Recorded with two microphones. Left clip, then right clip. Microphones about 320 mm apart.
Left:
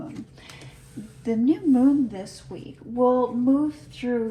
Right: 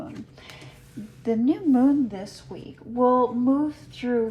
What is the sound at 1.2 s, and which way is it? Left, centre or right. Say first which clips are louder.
A woman's voice: left 1 dB; right.